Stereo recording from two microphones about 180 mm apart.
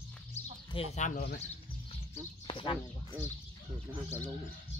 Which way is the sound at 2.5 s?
25° left (ahead or behind).